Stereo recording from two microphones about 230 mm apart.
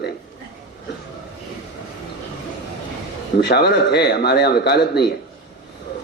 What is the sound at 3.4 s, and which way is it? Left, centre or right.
A man's voice, left.